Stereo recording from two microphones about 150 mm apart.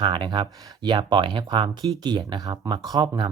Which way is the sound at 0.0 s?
30° right (ahead or behind).